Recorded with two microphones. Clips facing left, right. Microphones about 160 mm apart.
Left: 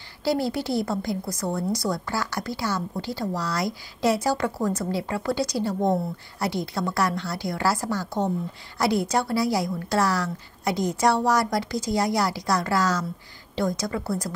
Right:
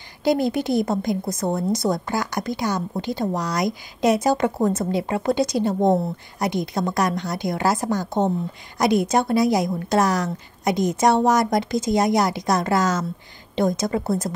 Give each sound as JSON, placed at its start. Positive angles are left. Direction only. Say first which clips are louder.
{"t": 0.2, "sound": "a woman's voice", "louder": "right 4 dB", "side_deg": -20}